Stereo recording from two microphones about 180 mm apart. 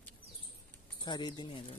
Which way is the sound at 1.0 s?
25° left (ahead or behind).